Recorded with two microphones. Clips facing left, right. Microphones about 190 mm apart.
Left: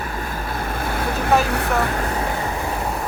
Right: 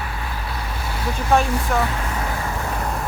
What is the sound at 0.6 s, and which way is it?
Vehicle, 50° left (ahead or behind).